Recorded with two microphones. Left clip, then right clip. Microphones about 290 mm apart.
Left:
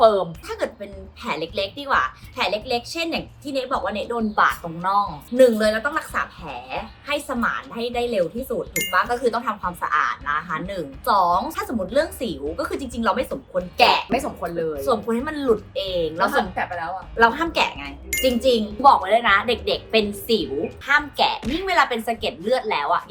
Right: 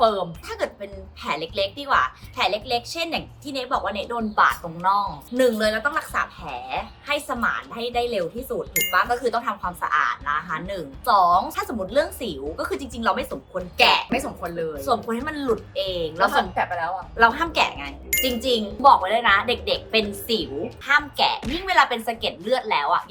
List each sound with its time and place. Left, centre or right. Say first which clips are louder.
0.0 s a woman's voice: left 4 dB; centre
16.3 s a woman's voice: right 1 dB; centre
17.2 s a woman's voice: even; centre